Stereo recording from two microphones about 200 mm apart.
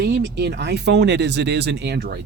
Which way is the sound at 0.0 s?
55° right (ahead or behind).